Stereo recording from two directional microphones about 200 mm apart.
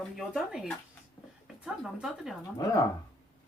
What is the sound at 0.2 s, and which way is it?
Speech, centre (ahead or behind).